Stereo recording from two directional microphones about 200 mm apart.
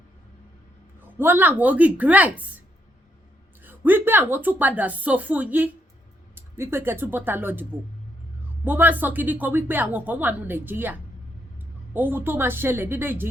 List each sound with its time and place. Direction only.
1.2 s a woman's voice: 10° right (ahead or behind)
3.6 s a woman's voice: 10° right (ahead or behind)